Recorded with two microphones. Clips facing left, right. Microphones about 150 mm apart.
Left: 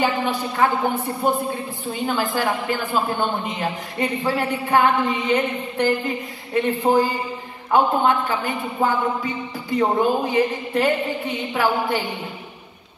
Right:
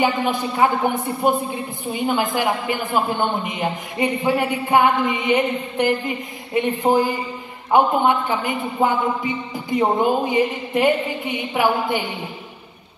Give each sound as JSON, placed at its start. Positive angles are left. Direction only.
{"t": 0.0, "sound": "speech", "side_deg": -15}